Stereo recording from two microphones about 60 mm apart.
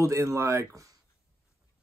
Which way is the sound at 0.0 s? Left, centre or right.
Right.